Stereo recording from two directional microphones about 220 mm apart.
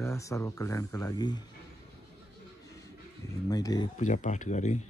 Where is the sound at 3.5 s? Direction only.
15° left (ahead or behind).